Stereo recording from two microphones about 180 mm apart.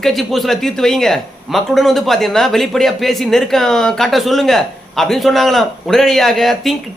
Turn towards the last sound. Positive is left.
turn(degrees=0)  # may be behind; listen again after turning